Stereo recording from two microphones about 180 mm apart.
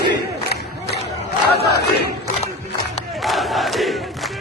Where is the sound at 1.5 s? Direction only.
65° left (ahead or behind).